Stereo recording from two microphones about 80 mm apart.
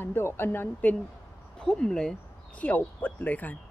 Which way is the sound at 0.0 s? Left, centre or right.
Left.